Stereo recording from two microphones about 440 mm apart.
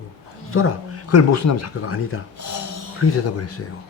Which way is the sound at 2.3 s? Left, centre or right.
Right.